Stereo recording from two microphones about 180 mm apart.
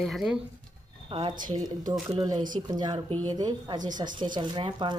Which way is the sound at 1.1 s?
30° right (ahead or behind).